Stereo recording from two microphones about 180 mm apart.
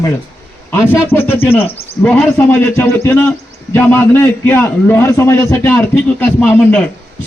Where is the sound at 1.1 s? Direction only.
10° left (ahead or behind).